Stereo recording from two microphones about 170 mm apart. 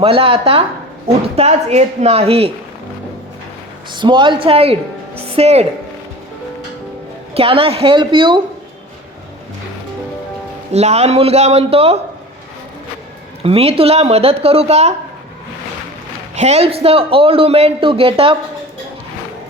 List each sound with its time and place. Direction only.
0.0 s a man's voice: 35° right (ahead or behind)
3.9 s a man's voice: 25° right (ahead or behind)
7.3 s a man's voice: 35° right (ahead or behind)
10.7 s a man's voice: 40° right (ahead or behind)
13.4 s a man's voice: 35° right (ahead or behind)
16.3 s a man's voice: 40° right (ahead or behind)